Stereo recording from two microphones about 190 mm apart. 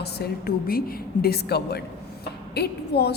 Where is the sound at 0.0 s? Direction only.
55° left (ahead or behind).